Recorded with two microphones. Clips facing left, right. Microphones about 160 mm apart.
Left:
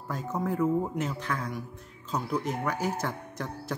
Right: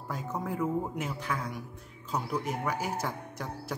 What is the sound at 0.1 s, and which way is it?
Speech, 10° right (ahead or behind).